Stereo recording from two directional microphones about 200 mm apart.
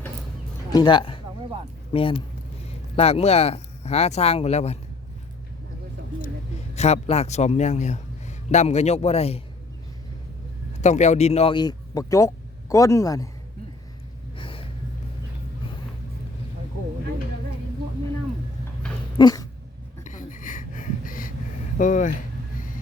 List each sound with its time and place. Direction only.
0.7 s speech: 25° left (ahead or behind)
6.7 s a man's voice: 35° left (ahead or behind)
10.8 s speech: 35° left (ahead or behind); by 13.2 s 15° left (ahead or behind)
14.3 s gasp: 25° left (ahead or behind)
19.1 s dog: 20° left (ahead or behind)
20.1 s a sound: 40° left (ahead or behind)
21.8 s a man's voice: 40° left (ahead or behind)